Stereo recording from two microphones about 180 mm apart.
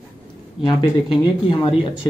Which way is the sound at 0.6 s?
25° left (ahead or behind).